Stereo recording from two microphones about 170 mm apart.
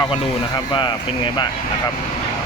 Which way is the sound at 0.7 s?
30° left (ahead or behind).